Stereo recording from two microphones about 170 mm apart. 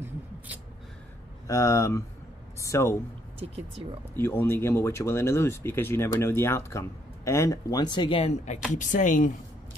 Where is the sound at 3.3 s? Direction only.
35° right (ahead or behind).